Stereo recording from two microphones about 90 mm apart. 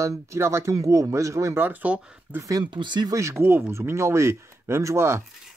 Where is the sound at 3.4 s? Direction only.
30° right (ahead or behind).